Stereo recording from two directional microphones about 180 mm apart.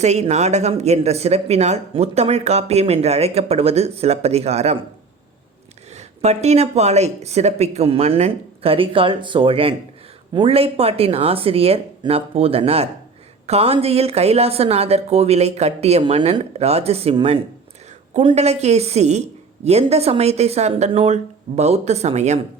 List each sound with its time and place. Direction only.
0.0 s speech: 40° right (ahead or behind)
5.9 s speech: 40° right (ahead or behind)